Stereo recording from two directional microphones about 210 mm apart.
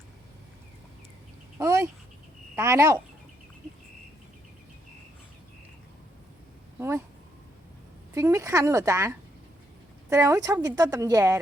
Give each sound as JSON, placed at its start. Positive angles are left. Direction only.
{"t": 1.5, "sound": "speech", "side_deg": -15}
{"t": 6.7, "sound": "speech", "side_deg": -15}
{"t": 8.1, "sound": "speech", "side_deg": -15}